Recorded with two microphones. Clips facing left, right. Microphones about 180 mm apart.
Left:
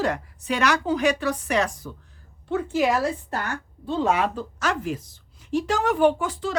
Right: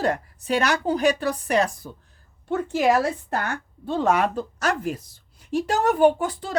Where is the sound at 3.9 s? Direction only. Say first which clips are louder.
Right 1 dB; 50° right (ahead or behind).